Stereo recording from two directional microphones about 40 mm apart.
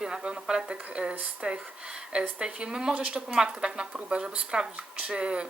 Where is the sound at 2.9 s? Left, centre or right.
Right.